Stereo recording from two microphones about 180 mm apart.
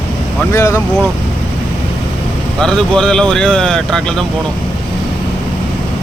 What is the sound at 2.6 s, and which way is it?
Speech, 5° left (ahead or behind).